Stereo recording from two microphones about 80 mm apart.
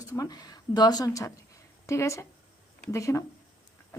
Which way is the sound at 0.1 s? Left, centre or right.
Left.